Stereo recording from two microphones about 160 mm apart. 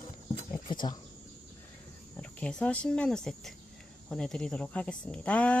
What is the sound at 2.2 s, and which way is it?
A woman's voice, 5° left (ahead or behind).